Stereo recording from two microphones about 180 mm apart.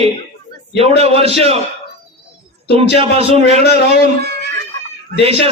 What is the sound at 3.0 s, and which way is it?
Speech, 35° right (ahead or behind).